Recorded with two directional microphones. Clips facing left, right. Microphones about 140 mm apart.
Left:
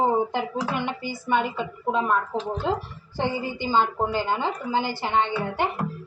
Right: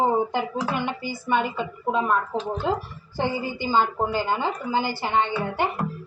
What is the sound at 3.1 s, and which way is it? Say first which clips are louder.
A woman's voice: right 1 dB; 10° right (ahead or behind).